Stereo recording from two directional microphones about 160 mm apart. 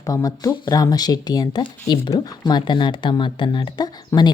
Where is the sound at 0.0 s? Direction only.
20° left (ahead or behind).